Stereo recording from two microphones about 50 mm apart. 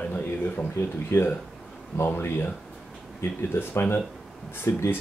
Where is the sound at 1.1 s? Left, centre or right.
Left.